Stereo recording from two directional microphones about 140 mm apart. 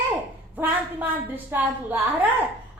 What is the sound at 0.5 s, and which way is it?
A woman's voice, 10° right (ahead or behind).